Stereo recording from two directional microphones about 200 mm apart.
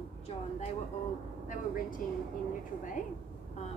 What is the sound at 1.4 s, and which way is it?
Speech, 45° left (ahead or behind).